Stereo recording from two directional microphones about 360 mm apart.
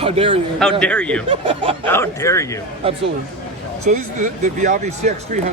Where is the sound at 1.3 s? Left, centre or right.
Centre.